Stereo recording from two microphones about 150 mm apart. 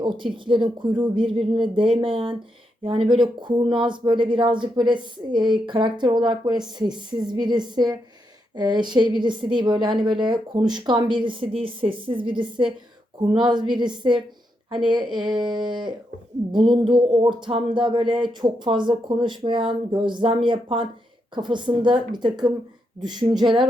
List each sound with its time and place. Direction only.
0.0 s speech: 30° right (ahead or behind)
14.8 s speech: 30° right (ahead or behind)